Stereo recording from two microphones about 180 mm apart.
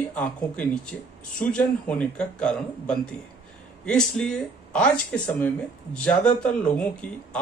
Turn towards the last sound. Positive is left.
turn(degrees=5)  # may be behind; listen again after turning